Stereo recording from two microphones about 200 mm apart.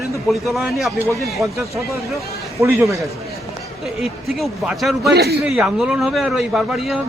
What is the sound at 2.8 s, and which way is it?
Speech, 15° right (ahead or behind).